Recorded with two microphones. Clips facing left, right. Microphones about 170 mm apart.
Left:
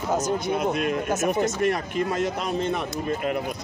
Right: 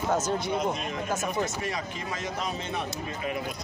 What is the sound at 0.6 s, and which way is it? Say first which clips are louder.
Speech: left 5 dB; 65° left (ahead or behind).